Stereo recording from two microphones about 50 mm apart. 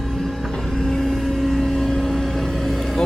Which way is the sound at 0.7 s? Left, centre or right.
Centre.